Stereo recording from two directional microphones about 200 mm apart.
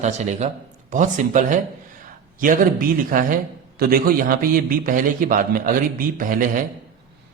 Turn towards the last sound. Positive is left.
turn(degrees=-45)  # may be behind; listen again after turning